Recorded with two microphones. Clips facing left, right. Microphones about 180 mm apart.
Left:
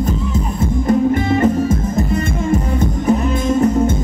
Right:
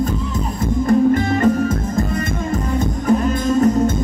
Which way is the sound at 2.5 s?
25° left (ahead or behind).